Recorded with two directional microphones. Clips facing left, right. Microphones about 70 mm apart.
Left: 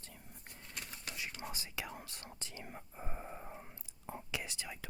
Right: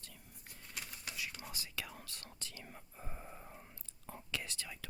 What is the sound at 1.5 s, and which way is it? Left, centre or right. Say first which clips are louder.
Speech: left 2 dB; left.